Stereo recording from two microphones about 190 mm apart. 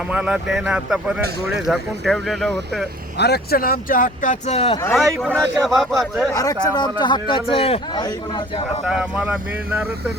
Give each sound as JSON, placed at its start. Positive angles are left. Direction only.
{"t": 0.1, "sound": "speech", "side_deg": -5}
{"t": 3.2, "sound": "speech", "side_deg": 60}
{"t": 5.2, "sound": "speech", "side_deg": 0}
{"t": 6.3, "sound": "speech", "side_deg": 20}
{"t": 8.9, "sound": "speech", "side_deg": -5}